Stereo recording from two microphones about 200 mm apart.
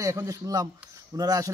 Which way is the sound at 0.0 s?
15° right (ahead or behind).